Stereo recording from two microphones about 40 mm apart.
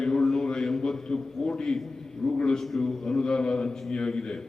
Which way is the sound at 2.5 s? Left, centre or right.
Centre.